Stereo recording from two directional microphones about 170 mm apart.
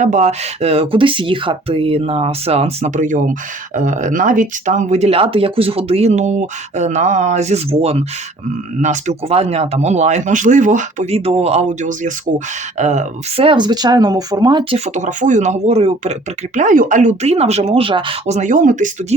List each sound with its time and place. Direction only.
0.0 s speech: 45° right (ahead or behind); by 14.8 s 30° right (ahead or behind)
14.8 s speech: 45° right (ahead or behind)
16.6 s speech: 50° right (ahead or behind)